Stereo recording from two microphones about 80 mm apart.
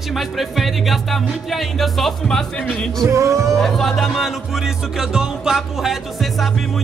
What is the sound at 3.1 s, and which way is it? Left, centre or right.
Speech, right.